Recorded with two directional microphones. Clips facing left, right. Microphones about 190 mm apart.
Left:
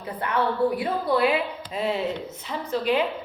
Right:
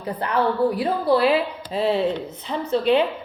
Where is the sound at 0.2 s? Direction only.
30° right (ahead or behind).